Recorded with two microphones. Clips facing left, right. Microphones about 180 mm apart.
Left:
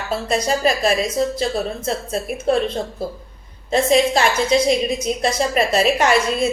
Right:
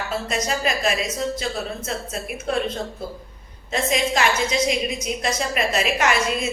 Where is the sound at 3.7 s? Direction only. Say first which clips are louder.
Left 7 dB; 35° left (ahead or behind).